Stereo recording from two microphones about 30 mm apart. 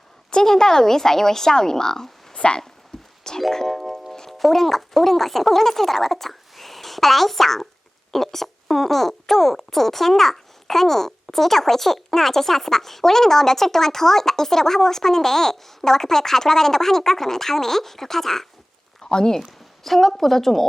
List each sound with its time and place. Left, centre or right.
0.4 s speech: centre
2.3 s a sound: left
2.9 s a sound: centre
3.5 s speech: centre
3.8 s music: centre
4.3 s speech: centre
19.0 s speech: left
19.4 s speech: centre